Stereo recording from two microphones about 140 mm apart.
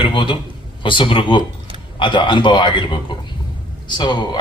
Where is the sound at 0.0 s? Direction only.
35° left (ahead or behind).